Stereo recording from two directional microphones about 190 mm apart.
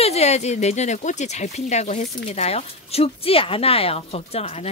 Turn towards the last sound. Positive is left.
turn(degrees=30)  # may be behind; listen again after turning